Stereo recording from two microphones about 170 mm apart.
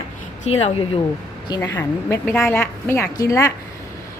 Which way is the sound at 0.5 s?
40° left (ahead or behind).